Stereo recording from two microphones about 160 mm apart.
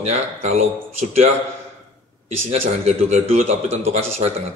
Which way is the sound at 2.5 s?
45° right (ahead or behind).